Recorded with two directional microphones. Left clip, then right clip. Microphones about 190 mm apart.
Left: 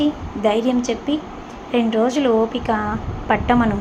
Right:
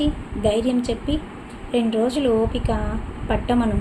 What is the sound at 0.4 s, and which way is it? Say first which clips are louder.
Speech: left 3 dB; 40° left (ahead or behind).